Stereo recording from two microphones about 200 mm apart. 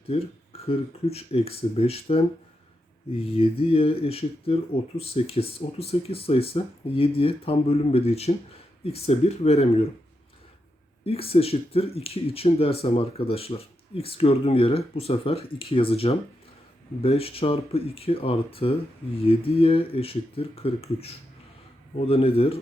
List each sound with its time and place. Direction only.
0.1 s speech: 30° left (ahead or behind)
11.0 s speech: 30° left (ahead or behind)